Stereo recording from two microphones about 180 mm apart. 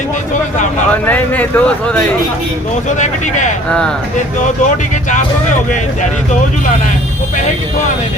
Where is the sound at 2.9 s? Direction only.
45° left (ahead or behind).